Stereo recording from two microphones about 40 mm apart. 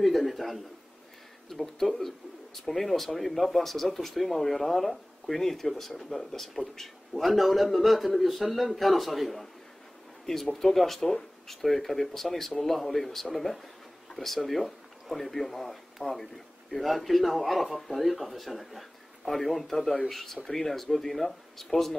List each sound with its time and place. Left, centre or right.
0.0 s speech: centre
7.2 s speech: centre
11.0 s speech: centre
11.4 s speech: centre